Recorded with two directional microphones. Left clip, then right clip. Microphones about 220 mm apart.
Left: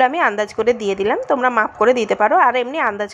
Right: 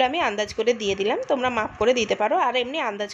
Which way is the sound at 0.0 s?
15° left (ahead or behind).